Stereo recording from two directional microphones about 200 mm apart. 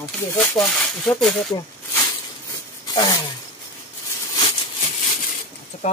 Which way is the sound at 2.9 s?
20° left (ahead or behind).